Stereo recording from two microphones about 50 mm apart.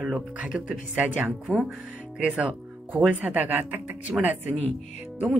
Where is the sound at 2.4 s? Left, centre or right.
Right.